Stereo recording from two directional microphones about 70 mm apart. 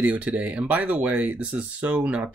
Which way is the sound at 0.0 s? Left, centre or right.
Right.